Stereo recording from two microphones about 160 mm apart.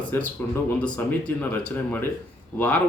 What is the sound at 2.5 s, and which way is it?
Speech, 10° left (ahead or behind).